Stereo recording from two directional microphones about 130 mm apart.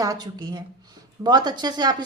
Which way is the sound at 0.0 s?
30° right (ahead or behind).